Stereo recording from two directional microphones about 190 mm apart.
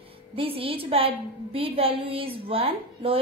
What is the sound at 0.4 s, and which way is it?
A woman's voice, 30° right (ahead or behind).